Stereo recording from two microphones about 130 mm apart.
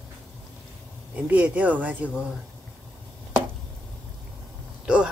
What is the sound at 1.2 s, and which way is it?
Speech, 10° right (ahead or behind).